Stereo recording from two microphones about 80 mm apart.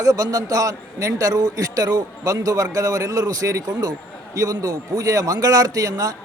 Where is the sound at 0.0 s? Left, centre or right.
Right.